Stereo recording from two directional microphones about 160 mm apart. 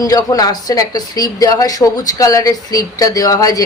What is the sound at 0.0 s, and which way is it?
Speech, 25° left (ahead or behind).